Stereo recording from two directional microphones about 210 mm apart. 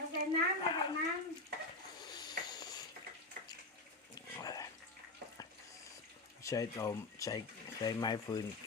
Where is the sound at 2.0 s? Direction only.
20° left (ahead or behind).